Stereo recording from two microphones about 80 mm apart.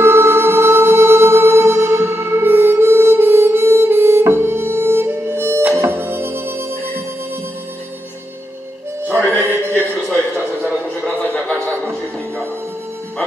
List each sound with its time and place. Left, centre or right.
0.0 s music: right
9.0 s music: right